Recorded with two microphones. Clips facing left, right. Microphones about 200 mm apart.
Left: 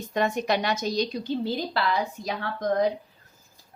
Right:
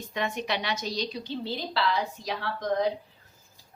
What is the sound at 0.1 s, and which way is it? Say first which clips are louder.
A woman's voice: left 6 dB; 45° left (ahead or behind).